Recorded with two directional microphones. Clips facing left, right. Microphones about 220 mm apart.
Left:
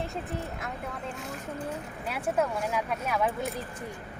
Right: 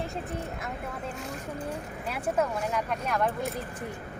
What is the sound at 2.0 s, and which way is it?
Speech, centre (ahead or behind).